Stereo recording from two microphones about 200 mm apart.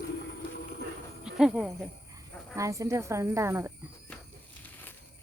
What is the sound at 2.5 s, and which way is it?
Speech, 15° right (ahead or behind).